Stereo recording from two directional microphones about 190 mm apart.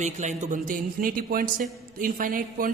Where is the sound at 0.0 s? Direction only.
40° right (ahead or behind).